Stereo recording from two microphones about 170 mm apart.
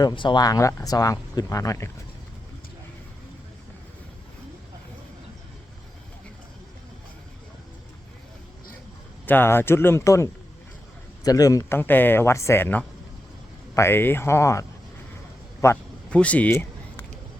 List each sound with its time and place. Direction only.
0.0 s speech: 25° left (ahead or behind)
9.2 s speech: 10° left (ahead or behind)
15.6 s a sound: 10° left (ahead or behind)